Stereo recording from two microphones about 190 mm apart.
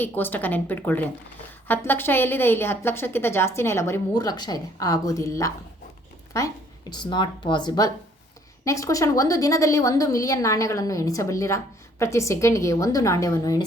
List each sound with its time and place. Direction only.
0.0 s a woman's voice: 10° left (ahead or behind)
6.9 s a woman's voice: 25° left (ahead or behind)